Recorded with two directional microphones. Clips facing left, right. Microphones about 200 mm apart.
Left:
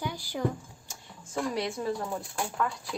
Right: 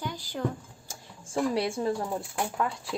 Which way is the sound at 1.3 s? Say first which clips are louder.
Right 4 dB; 30° right (ahead or behind).